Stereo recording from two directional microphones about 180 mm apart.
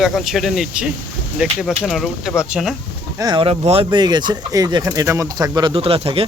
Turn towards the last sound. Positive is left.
turn(degrees=-30)  # may be behind; listen again after turning